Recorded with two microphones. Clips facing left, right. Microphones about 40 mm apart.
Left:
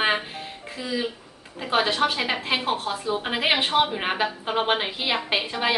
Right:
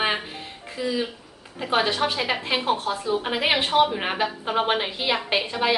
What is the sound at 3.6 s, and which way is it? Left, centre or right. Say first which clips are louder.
Speech: right 2 dB; left.